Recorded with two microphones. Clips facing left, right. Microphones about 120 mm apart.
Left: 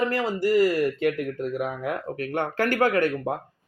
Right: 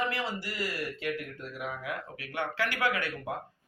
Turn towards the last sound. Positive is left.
turn(degrees=50)  # may be behind; listen again after turning